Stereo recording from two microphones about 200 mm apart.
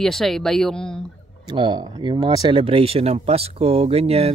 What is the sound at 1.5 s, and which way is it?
Speech, 20° right (ahead or behind).